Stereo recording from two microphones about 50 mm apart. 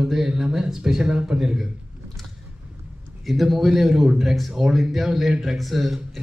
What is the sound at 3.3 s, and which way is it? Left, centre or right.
A man's voice, centre.